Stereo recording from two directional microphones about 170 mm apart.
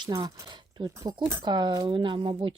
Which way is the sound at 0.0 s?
25° right (ahead or behind).